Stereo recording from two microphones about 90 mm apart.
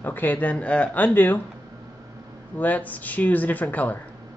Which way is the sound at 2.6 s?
20° left (ahead or behind).